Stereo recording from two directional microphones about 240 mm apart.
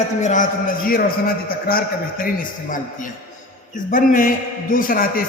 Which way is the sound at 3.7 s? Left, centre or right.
Left.